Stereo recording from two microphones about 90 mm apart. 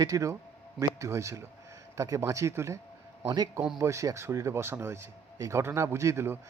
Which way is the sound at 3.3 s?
50° right (ahead or behind).